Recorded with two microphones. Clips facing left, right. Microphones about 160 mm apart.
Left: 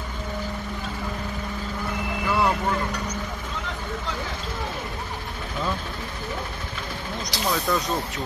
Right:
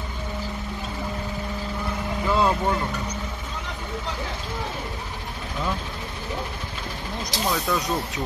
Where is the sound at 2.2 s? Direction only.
20° right (ahead or behind).